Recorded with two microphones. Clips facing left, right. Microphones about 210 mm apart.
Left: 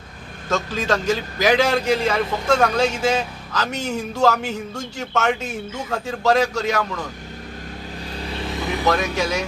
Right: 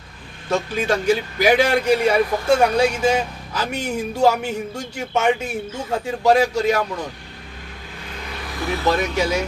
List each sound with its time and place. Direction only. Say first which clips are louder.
0.5 s a man's voice: right 1 dB; 15° right (ahead or behind)
8.1 s vehicle: left 4 dB; 30° left (ahead or behind)